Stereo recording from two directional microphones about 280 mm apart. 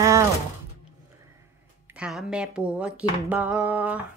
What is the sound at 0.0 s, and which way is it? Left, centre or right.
Music, centre.